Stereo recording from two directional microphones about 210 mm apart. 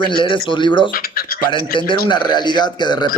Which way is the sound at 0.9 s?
45° left (ahead or behind).